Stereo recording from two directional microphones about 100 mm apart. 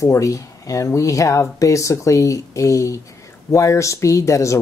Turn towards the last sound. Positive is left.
turn(degrees=30)  # may be behind; listen again after turning